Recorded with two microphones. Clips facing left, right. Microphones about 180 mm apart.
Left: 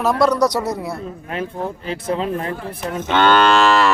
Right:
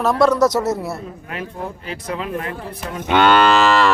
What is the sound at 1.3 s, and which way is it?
Speech, 30° left (ahead or behind).